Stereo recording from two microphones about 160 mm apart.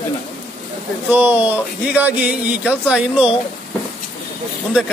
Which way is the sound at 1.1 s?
10° right (ahead or behind).